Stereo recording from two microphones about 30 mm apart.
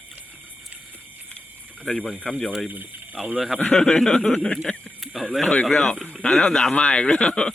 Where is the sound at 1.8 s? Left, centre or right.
Left.